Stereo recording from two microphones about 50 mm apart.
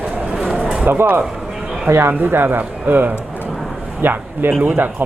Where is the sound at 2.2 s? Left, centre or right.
Right.